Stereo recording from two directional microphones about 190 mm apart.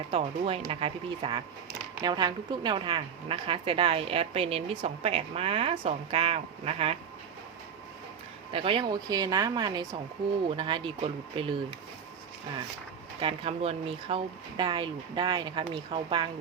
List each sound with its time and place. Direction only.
0.1 s a woman's voice: 30° right (ahead or behind)
8.5 s speech: 25° right (ahead or behind)
13.1 s speech: 30° right (ahead or behind)